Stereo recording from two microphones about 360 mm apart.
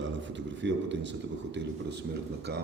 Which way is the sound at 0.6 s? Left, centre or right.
Right.